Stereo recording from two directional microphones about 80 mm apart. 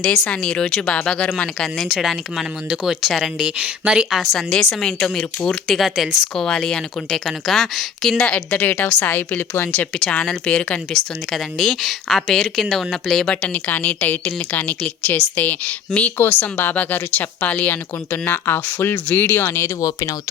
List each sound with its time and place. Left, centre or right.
0.0 s speech: centre
1.5 s speech: centre
8.4 s a woman's voice: left
11.3 s speech: centre
13.3 s a woman's voice: centre
19.8 s speech: left